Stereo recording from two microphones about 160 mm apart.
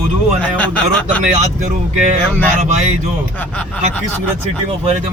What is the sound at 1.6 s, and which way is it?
Speech, 45° right (ahead or behind).